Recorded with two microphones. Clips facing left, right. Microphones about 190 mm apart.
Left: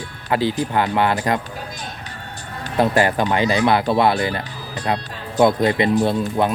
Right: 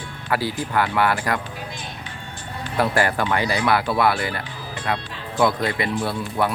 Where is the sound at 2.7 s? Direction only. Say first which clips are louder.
Left 4 dB; 20° left (ahead or behind).